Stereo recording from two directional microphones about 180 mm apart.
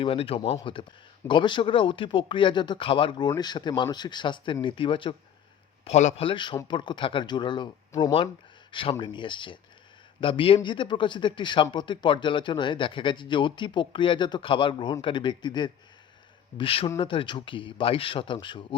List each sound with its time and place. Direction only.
0.0 s a man's voice: 30° left (ahead or behind)
5.8 s a man's voice: 40° left (ahead or behind)